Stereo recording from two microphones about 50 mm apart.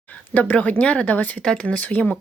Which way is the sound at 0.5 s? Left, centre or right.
Left.